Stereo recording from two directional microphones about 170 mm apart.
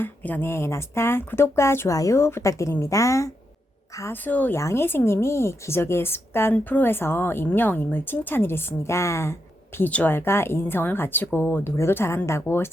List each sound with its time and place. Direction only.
0.0 s speech: 10° left (ahead or behind)